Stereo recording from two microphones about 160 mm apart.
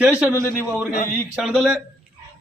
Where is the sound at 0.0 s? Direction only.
10° right (ahead or behind).